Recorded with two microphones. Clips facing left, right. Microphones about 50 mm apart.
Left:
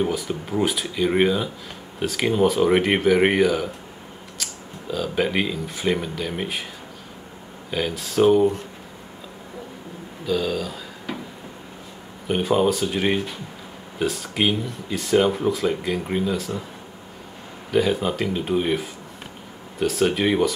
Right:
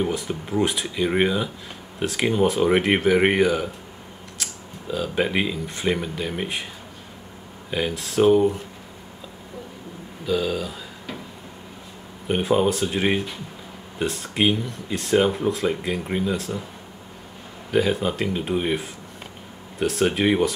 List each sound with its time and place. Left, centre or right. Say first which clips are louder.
0.0 s speech: left 1 dB; centre
4.9 s speech: even; centre
7.7 s speech: even; centre
10.2 s speech: even; centre
12.3 s speech: even; centre
17.7 s speech: left 1 dB; centre